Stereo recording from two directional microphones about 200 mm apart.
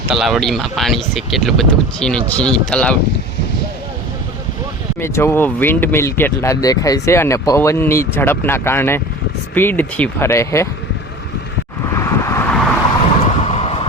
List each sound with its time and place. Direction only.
0.1 s speech: centre (ahead or behind)
4.9 s speech: 15° left (ahead or behind)
11.9 s vehicle: 15° left (ahead or behind)
13.4 s vehicle: 30° left (ahead or behind)